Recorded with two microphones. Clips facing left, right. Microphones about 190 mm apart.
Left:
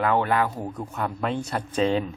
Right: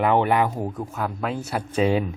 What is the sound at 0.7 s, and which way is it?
Speech, centre (ahead or behind).